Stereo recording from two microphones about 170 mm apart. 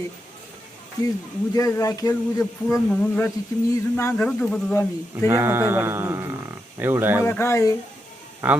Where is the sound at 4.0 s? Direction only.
15° left (ahead or behind).